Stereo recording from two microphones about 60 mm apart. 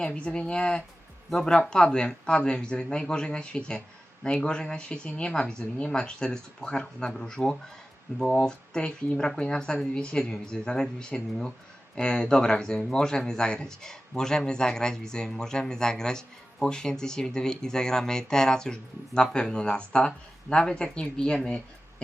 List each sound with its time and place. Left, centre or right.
0.0 s speech: centre